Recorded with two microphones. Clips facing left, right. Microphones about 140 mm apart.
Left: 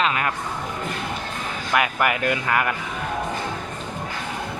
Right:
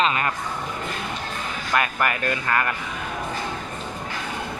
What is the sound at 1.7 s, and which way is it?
Speech, 15° left (ahead or behind).